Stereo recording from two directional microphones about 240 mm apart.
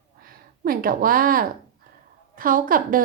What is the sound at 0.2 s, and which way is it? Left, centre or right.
A woman's voice, right.